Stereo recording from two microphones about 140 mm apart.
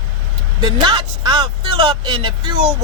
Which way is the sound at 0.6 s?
35° right (ahead or behind).